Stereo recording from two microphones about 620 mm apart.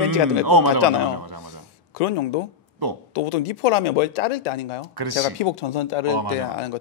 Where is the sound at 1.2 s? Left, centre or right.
Right.